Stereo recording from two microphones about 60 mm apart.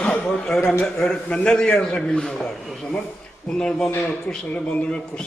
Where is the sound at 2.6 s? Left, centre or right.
Centre.